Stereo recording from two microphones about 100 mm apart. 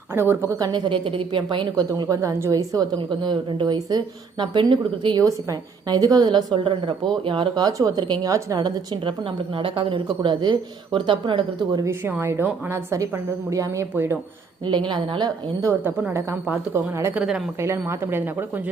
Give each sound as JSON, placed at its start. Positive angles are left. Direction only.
{"t": 0.1, "sound": "a woman's voice", "side_deg": -25}
{"t": 0.7, "sound": "a woman's voice", "side_deg": -55}
{"t": 3.1, "sound": "a woman's voice", "side_deg": -50}
{"t": 5.2, "sound": "a woman's voice", "side_deg": -35}
{"t": 7.6, "sound": "a woman's voice", "side_deg": -35}
{"t": 11.9, "sound": "a woman's voice", "side_deg": -20}
{"t": 13.9, "sound": "a woman's voice", "side_deg": -20}
{"t": 14.6, "sound": "a woman's voice", "side_deg": -50}
{"t": 16.9, "sound": "a woman's voice", "side_deg": -30}
{"t": 17.2, "sound": "a woman's voice", "side_deg": -10}
{"t": 17.6, "sound": "a woman's voice", "side_deg": -25}